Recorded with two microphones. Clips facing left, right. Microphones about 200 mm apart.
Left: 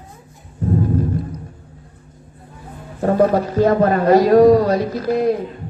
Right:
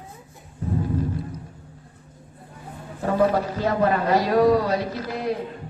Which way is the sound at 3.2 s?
45° left (ahead or behind).